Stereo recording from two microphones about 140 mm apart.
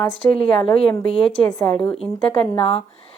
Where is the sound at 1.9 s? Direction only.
45° left (ahead or behind).